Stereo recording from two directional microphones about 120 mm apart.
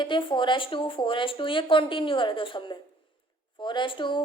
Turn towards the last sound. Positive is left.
turn(degrees=45)  # may be behind; listen again after turning